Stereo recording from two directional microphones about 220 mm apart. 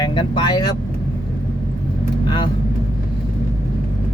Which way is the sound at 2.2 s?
20° left (ahead or behind).